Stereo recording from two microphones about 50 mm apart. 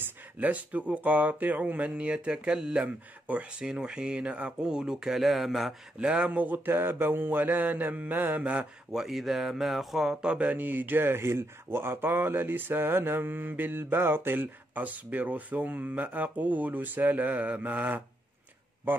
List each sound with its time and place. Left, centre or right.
0.4 s speech: right; by 5.8 s centre
5.9 s speech: right
8.9 s speech: centre
10.2 s speech: right
10.5 s speech: right